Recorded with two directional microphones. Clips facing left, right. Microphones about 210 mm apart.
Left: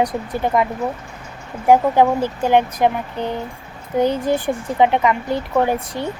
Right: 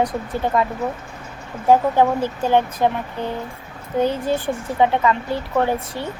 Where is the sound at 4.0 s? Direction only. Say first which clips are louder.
Left 2 dB; 15° left (ahead or behind).